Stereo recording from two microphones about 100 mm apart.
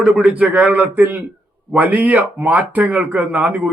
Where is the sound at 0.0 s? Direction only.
10° right (ahead or behind).